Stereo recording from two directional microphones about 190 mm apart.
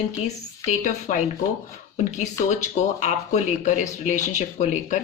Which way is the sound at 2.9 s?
40° left (ahead or behind).